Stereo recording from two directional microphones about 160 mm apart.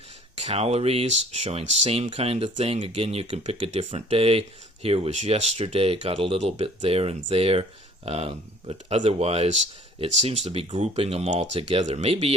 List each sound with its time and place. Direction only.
0.3 s speech: 40° right (ahead or behind)
11.5 s speech: 30° right (ahead or behind)
11.9 s speech: 40° right (ahead or behind)